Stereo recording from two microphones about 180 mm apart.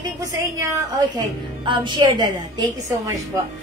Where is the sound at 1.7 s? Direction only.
25° right (ahead or behind).